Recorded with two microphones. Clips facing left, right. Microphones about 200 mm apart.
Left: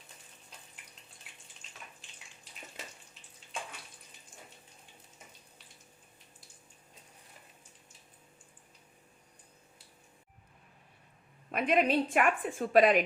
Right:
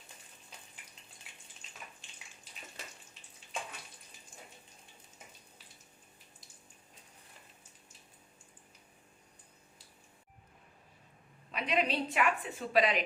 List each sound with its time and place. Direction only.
11.5 s a woman's voice: 50° left (ahead or behind)